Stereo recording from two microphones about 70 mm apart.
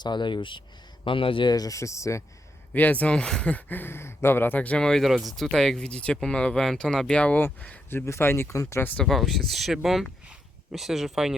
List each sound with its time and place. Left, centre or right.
0.0 s speech: left
1.5 s speech: left
2.7 s speech: left
3.5 s speech: left
4.8 s speech: centre
7.4 s speech: left
8.0 s speech: left
9.0 s speech: centre